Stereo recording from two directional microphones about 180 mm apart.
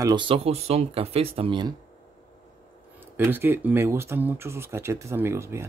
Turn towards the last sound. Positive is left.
turn(degrees=-15)  # may be behind; listen again after turning